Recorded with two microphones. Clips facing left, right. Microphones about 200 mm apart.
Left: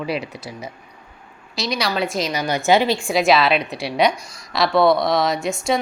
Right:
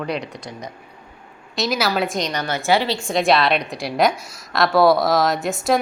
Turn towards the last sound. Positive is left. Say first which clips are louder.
# right 1 dB
turn(degrees=0)  # may be behind; listen again after turning